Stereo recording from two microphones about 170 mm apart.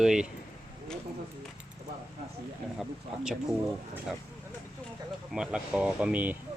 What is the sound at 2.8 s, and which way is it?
Speech, 5° right (ahead or behind).